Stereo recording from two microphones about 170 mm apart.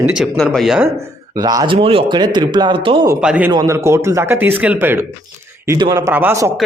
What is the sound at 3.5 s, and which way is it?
Speech, 20° right (ahead or behind).